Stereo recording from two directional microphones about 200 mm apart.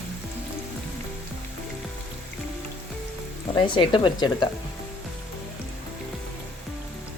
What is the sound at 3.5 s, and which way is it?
Speech, 25° left (ahead or behind).